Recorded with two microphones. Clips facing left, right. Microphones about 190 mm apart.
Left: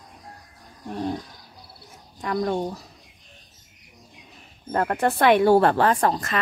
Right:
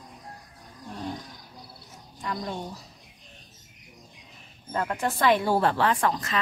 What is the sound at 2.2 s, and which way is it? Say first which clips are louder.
Speech: left 8 dB; 60° left (ahead or behind).